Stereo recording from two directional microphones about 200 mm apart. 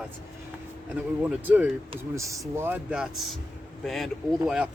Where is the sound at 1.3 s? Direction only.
10° right (ahead or behind).